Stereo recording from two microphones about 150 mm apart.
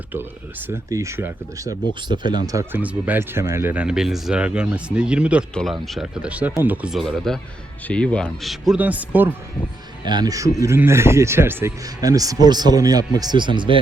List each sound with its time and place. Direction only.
0.7 s speech: 20° right (ahead or behind)
10.1 s speech: 25° right (ahead or behind)